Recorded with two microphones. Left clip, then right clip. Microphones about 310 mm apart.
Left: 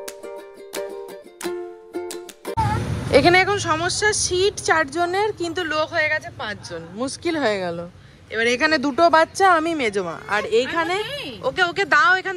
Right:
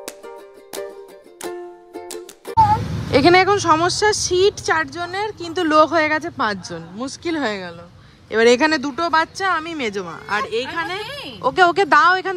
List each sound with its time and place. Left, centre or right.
1.4 s music: centre
3.1 s a woman's voice: centre
6.7 s a woman's voice: centre
11.4 s a woman's voice: centre